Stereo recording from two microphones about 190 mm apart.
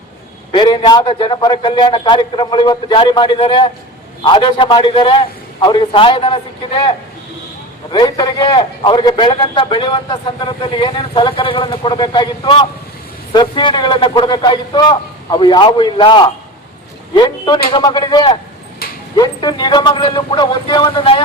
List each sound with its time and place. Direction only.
0.5 s a man's voice: 25° left (ahead or behind)
7.9 s a man's voice: 20° left (ahead or behind)
18.8 s dog: 55° left (ahead or behind)
19.1 s a man's voice: 20° left (ahead or behind)